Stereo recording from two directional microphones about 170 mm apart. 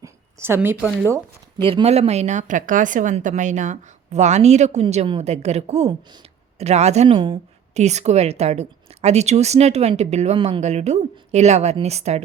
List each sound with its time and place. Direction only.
0.0 s a sound: 15° right (ahead or behind)
1.0 s speech: 15° right (ahead or behind)
1.6 s a woman's voice: 35° right (ahead or behind)